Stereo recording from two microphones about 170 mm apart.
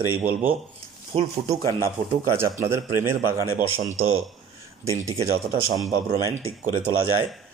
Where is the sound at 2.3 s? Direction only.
15° right (ahead or behind).